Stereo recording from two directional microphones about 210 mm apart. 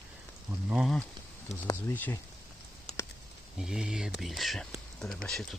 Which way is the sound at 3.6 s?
5° right (ahead or behind).